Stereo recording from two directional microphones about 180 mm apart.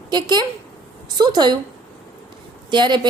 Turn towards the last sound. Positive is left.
turn(degrees=-25)  # may be behind; listen again after turning